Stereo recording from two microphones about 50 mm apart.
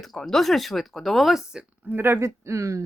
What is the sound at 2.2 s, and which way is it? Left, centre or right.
Speech, right.